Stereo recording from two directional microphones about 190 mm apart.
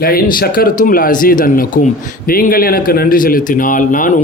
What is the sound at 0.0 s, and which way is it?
Speech, 50° left (ahead or behind).